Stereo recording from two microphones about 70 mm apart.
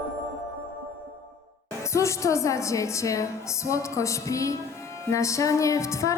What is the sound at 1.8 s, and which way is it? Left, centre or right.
A woman's voice, left.